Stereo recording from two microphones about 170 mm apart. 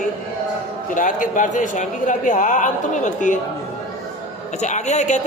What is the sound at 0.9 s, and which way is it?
A man's voice, 50° left (ahead or behind).